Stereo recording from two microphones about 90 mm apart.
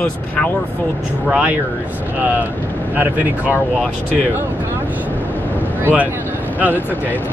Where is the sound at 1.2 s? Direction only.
15° right (ahead or behind).